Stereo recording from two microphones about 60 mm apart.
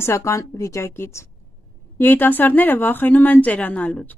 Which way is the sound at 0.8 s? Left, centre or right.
Left.